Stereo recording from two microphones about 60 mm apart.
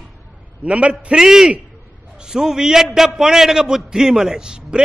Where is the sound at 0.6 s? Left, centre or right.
Right.